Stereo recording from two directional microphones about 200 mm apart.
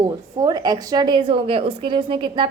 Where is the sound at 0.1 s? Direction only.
20° right (ahead or behind).